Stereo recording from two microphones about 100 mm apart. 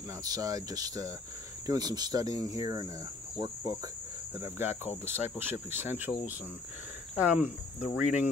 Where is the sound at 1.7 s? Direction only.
40° right (ahead or behind).